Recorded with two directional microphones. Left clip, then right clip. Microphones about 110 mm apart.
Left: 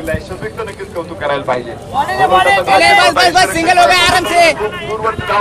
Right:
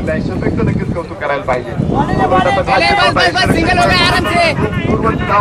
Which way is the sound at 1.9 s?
50° left (ahead or behind).